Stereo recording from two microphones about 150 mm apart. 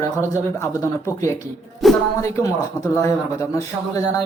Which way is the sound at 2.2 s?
20° left (ahead or behind).